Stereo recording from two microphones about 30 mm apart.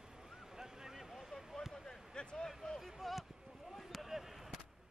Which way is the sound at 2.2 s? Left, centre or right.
Left.